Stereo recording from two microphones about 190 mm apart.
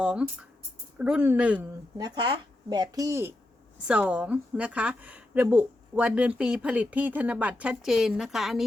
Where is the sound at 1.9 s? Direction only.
20° right (ahead or behind).